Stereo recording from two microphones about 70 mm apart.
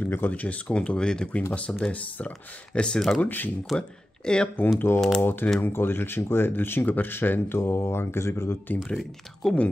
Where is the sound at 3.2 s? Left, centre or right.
Left.